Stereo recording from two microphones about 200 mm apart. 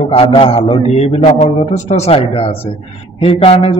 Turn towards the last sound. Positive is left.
turn(degrees=30)  # may be behind; listen again after turning